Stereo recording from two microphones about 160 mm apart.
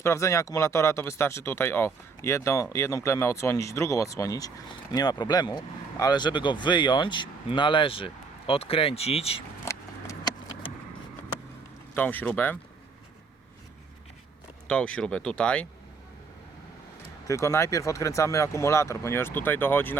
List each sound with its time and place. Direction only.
0.0 s speech: 20° left (ahead or behind); by 9.4 s 40° left (ahead or behind)
9.6 s vehicle: 20° left (ahead or behind)
11.9 s speech: 10° left (ahead or behind)
14.7 s speech: 5° left (ahead or behind)
17.2 s speech: 20° left (ahead or behind)